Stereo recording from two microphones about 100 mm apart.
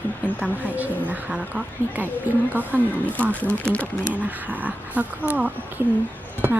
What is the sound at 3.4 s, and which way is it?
Speech, 15° left (ahead or behind).